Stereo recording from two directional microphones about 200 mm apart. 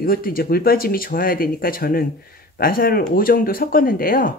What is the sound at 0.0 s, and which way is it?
Speech, 45° left (ahead or behind).